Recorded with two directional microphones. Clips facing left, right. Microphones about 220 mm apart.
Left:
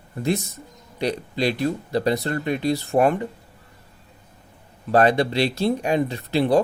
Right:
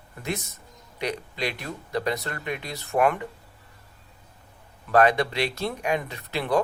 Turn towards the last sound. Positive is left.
turn(degrees=30)  # may be behind; listen again after turning